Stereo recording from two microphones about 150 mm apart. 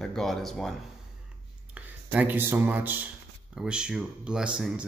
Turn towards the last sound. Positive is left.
turn(degrees=-5)  # may be behind; listen again after turning